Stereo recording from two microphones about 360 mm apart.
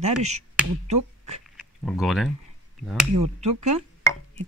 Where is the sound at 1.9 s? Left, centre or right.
Centre.